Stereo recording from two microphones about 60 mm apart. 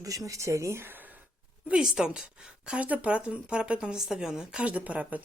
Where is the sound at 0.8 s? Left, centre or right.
Right.